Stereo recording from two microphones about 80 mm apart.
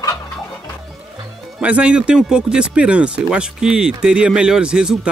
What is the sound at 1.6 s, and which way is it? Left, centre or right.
Speech, centre.